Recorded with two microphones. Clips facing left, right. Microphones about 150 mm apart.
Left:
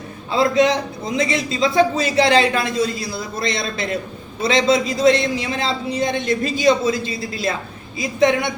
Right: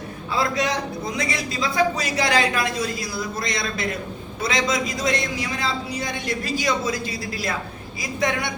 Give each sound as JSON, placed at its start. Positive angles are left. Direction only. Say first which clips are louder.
{"t": 0.3, "sound": "a man's voice", "louder": "left 7 dB", "side_deg": 25}